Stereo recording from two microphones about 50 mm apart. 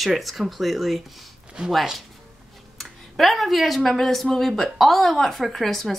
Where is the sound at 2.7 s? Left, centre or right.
Centre.